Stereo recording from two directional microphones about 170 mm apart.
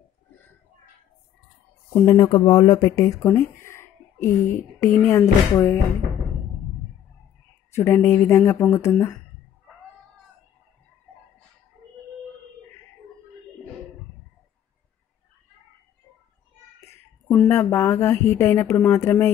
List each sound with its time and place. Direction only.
2.1 s speech: 25° left (ahead or behind)
7.7 s speech: 15° left (ahead or behind)
17.3 s speech: 5° left (ahead or behind)
17.6 s speech: 15° left (ahead or behind)